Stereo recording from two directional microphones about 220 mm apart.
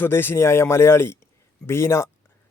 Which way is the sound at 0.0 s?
10° left (ahead or behind).